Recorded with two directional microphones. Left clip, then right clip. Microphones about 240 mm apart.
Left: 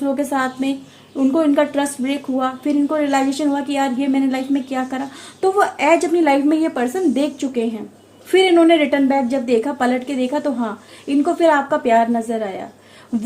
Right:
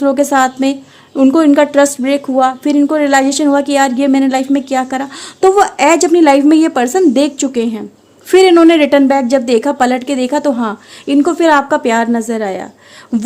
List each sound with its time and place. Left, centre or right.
0.0 s a woman's voice: right